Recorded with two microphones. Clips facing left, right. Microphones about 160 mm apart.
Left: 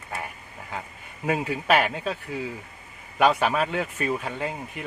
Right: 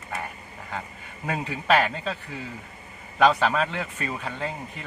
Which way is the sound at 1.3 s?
5° left (ahead or behind).